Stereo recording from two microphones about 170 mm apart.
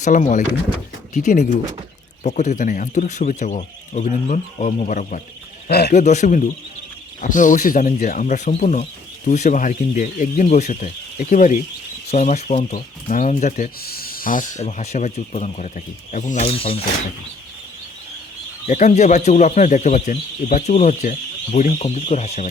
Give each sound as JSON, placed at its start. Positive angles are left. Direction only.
{"t": 0.0, "sound": "speech", "side_deg": 45}
{"t": 5.6, "sound": "speech", "side_deg": 70}
{"t": 5.9, "sound": "speech", "side_deg": 45}
{"t": 18.7, "sound": "speech", "side_deg": 45}